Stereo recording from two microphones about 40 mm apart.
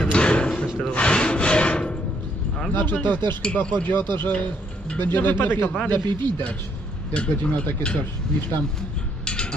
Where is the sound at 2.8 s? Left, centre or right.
Left.